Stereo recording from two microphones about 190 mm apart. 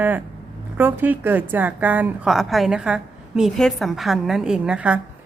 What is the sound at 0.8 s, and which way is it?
A woman's voice, 10° right (ahead or behind).